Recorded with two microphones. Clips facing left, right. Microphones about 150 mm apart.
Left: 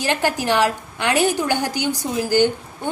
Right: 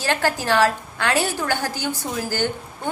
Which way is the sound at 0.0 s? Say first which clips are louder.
Left 1 dB; 15° left (ahead or behind).